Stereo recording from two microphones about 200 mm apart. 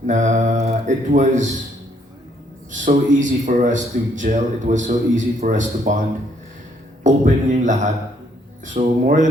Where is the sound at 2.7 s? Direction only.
40° right (ahead or behind).